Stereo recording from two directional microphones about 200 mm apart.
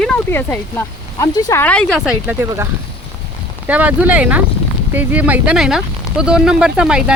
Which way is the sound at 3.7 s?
5° right (ahead or behind).